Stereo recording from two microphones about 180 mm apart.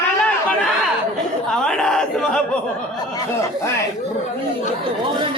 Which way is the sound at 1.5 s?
5° left (ahead or behind).